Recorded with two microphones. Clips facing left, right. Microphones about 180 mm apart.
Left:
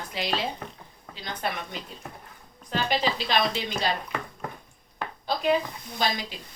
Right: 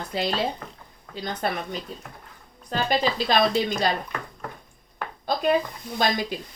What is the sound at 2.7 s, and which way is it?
Speech, 45° right (ahead or behind).